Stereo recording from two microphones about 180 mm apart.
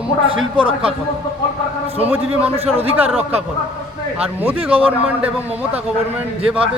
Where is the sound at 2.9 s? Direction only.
5° right (ahead or behind).